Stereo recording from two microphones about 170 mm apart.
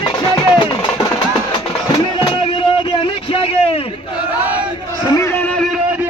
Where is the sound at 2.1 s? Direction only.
30° left (ahead or behind).